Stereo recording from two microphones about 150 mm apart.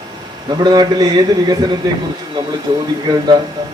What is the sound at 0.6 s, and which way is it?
Speech, 25° right (ahead or behind).